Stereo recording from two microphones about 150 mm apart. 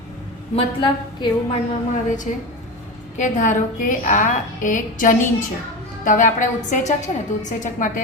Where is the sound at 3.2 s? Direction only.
55° left (ahead or behind).